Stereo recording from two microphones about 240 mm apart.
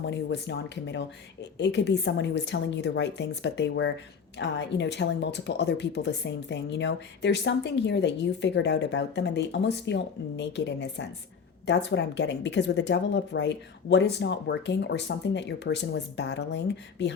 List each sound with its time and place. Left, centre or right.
0.1 s a woman's voice: left